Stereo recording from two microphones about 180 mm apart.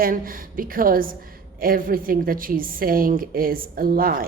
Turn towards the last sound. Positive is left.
turn(degrees=-55)  # may be behind; listen again after turning